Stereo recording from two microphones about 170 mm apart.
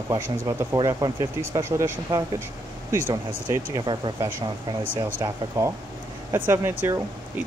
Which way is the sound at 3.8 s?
25° right (ahead or behind).